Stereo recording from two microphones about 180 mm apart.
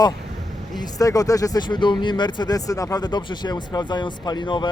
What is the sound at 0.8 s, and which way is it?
Speech, 20° left (ahead or behind).